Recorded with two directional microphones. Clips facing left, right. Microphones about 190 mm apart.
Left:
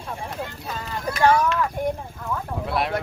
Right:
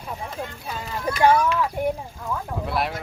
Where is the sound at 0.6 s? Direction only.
10° right (ahead or behind).